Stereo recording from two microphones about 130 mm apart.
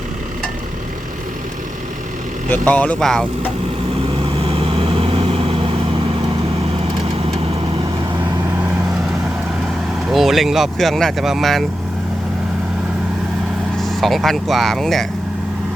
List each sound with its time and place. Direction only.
2.5 s speech: 10° left (ahead or behind)
4.2 s vehicle: 45° right (ahead or behind)
10.1 s speech: centre (ahead or behind)
13.7 s speech: centre (ahead or behind)